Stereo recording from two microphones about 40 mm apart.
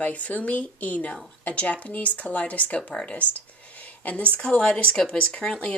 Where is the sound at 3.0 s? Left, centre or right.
Left.